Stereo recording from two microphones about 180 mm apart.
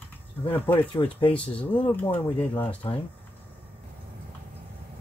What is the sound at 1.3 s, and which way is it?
Speech, 5° left (ahead or behind).